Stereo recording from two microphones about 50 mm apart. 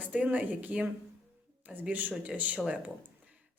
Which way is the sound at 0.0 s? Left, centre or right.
Right.